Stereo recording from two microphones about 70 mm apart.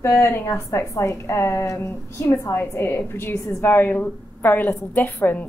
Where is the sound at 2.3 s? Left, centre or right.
Left.